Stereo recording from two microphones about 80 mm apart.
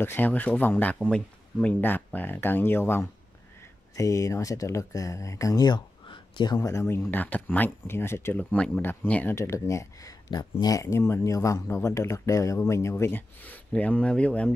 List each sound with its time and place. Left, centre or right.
0.0 s speech: left
3.9 s speech: left
6.0 s a sound: left
6.6 s speech: left
7.1 s speech: left
8.4 s speech: centre
9.3 s speech: left
10.3 s speech: left
10.8 s speech: left; by 14.5 s centre